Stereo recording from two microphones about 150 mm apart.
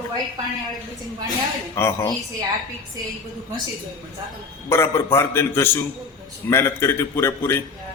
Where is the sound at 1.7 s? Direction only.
20° left (ahead or behind).